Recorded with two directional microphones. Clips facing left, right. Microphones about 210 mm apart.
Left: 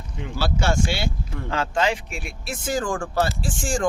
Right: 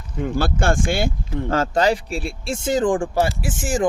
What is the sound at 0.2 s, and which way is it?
Speech, 50° right (ahead or behind).